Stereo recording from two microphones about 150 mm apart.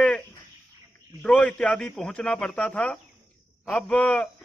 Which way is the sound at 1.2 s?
10° left (ahead or behind).